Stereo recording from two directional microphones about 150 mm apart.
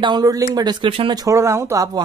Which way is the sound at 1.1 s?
20° right (ahead or behind).